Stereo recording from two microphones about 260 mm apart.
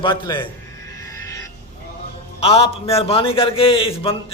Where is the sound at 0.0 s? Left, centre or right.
Centre.